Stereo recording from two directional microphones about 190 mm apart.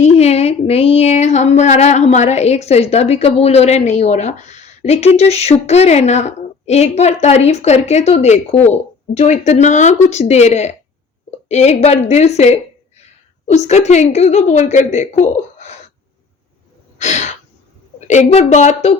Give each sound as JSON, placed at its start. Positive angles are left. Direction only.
{"t": 0.0, "sound": "speech", "side_deg": 35}
{"t": 17.0, "sound": "gasp", "side_deg": 35}
{"t": 18.1, "sound": "speech", "side_deg": 35}